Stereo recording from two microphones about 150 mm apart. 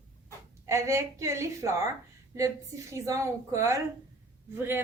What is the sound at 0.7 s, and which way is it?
A woman's voice, 20° right (ahead or behind).